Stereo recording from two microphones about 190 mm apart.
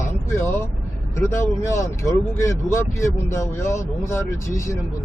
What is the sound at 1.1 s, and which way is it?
Speech, 15° left (ahead or behind).